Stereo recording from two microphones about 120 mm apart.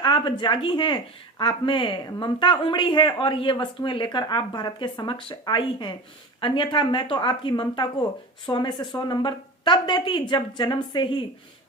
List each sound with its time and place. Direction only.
0.0 s speech: 40° left (ahead or behind)